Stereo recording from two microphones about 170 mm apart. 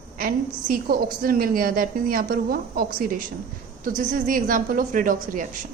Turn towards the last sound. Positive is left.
turn(degrees=-55)  # may be behind; listen again after turning